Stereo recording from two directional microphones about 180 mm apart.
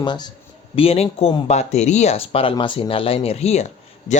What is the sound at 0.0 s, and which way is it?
A man's voice, 25° left (ahead or behind).